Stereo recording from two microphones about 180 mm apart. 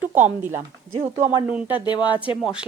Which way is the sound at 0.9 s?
35° right (ahead or behind).